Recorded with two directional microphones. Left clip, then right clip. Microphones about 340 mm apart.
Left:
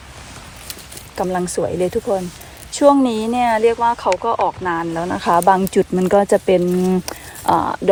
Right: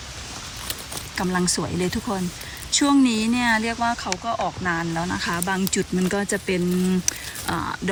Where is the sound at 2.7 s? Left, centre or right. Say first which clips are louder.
Left 7 dB; centre.